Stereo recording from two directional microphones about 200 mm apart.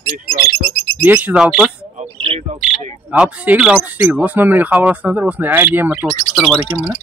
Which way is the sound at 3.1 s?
5° right (ahead or behind).